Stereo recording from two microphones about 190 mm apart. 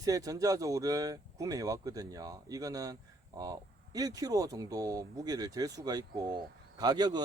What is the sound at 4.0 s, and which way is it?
Speech, 20° right (ahead or behind).